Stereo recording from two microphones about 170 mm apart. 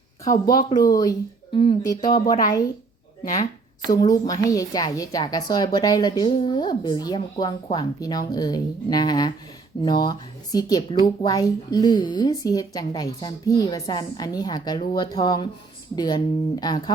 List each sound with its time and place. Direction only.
0.3 s a woman's voice: 20° left (ahead or behind)
3.8 s a woman's voice: 20° left (ahead or behind)